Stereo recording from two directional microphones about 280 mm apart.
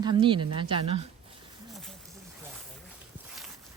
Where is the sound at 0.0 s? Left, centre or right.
Centre.